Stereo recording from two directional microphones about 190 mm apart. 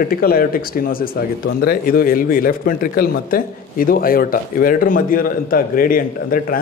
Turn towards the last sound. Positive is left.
turn(degrees=50)  # may be behind; listen again after turning